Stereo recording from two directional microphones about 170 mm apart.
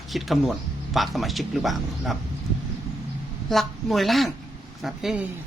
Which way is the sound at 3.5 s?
Centre (ahead or behind).